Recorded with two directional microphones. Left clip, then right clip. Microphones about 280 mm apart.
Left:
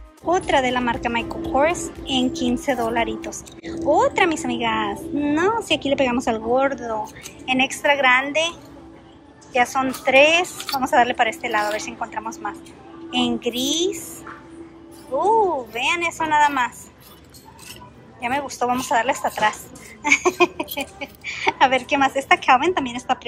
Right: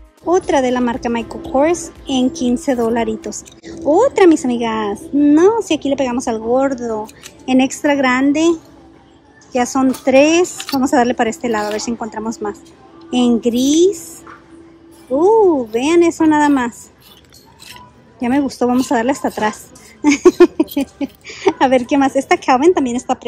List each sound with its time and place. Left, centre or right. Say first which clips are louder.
0.3 s a woman's voice: right 4 dB; centre
9.5 s a woman's voice: right 3 dB; centre
15.1 s a woman's voice: right 7 dB; right
18.2 s a woman's voice: right 6 dB; right